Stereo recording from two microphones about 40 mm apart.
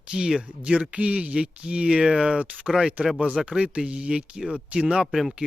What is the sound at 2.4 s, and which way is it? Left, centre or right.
Speech, right.